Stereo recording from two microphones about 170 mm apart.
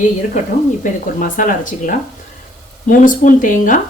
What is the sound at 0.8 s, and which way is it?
Speech, 50° left (ahead or behind).